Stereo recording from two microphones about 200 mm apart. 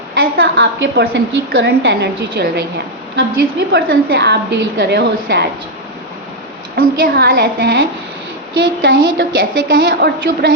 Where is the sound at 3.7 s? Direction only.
55° right (ahead or behind).